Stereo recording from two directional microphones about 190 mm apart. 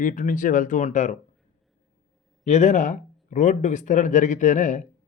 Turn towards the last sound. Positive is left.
turn(degrees=40)  # may be behind; listen again after turning